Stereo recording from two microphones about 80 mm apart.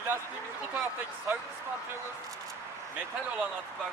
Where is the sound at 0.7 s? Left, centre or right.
Right.